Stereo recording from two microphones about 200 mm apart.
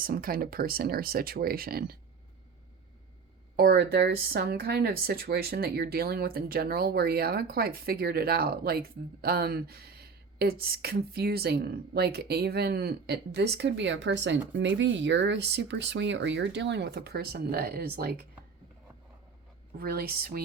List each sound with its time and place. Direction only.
0.0 s speech: 45° right (ahead or behind)
3.5 s speech: 50° right (ahead or behind)
19.7 s speech: 50° right (ahead or behind)